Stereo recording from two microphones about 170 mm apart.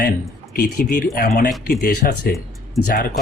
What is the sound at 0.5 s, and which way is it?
Speech, 60° left (ahead or behind).